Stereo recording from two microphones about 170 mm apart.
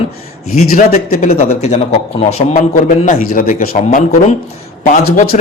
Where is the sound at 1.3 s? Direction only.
35° left (ahead or behind).